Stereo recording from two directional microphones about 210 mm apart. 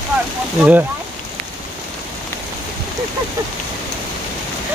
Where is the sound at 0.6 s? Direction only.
10° right (ahead or behind).